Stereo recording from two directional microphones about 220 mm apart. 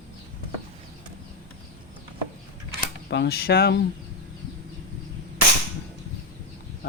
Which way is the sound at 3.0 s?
50° left (ahead or behind).